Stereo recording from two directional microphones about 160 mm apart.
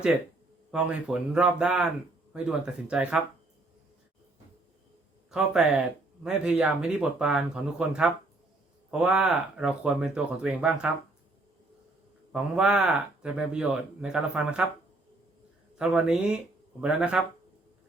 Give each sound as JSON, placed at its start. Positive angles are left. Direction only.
{"t": 0.7, "sound": "speech", "side_deg": -5}
{"t": 5.3, "sound": "speech", "side_deg": -5}
{"t": 12.3, "sound": "speech", "side_deg": -5}
{"t": 15.8, "sound": "speech", "side_deg": -5}